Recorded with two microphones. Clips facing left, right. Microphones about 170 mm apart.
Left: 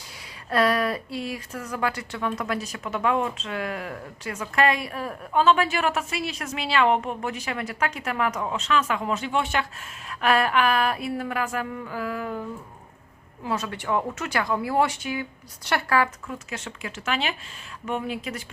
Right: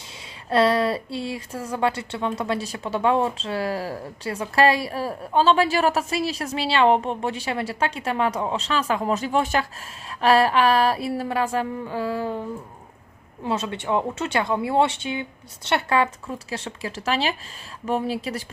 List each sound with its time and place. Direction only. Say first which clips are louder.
0.5 s speech: right 3 dB; 25° right (ahead or behind)